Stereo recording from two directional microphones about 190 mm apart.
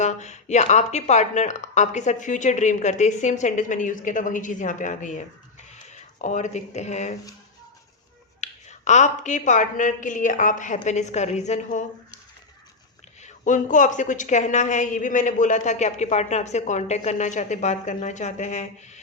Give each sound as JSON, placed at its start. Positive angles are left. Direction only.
{"t": 0.0, "sound": "a woman's voice", "side_deg": 40}
{"t": 8.4, "sound": "a woman's voice", "side_deg": 40}
{"t": 13.2, "sound": "a woman's voice", "side_deg": 40}